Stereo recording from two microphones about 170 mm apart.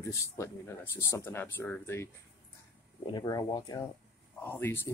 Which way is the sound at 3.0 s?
25° left (ahead or behind).